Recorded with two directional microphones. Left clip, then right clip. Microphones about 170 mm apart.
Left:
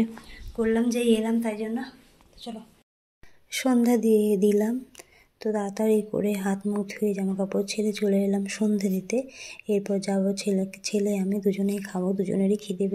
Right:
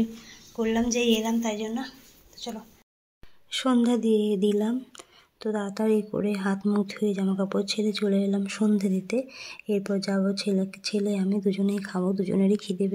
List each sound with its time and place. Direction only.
0.6 s a woman's voice: 20° left (ahead or behind)
1.4 s a woman's voice: 10° left (ahead or behind)
2.4 s speech: centre (ahead or behind)